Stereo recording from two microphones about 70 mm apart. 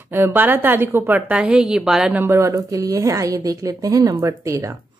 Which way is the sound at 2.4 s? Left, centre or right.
Right.